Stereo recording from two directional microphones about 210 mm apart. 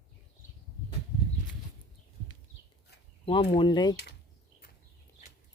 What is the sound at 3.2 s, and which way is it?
Speech, 25° left (ahead or behind).